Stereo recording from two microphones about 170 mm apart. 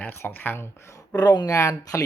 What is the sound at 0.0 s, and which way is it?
Speech, 15° left (ahead or behind).